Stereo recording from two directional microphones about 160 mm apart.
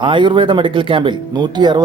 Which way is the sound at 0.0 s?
30° right (ahead or behind).